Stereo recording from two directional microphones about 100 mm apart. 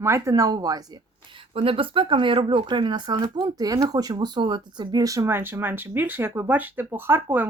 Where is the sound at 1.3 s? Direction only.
65° right (ahead or behind).